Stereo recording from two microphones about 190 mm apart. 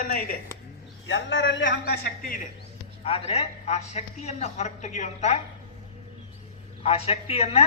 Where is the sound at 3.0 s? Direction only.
30° left (ahead or behind).